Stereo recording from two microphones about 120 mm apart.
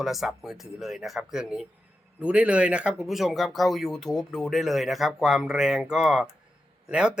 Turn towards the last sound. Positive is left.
turn(degrees=-5)  # may be behind; listen again after turning